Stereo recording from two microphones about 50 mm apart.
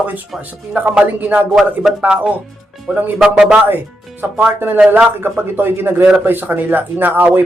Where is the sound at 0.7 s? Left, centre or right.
Right.